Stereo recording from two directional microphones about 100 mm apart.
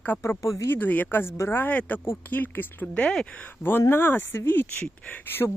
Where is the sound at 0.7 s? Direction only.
15° left (ahead or behind).